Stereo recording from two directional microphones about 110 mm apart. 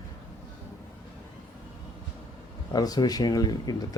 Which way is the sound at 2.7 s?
35° left (ahead or behind).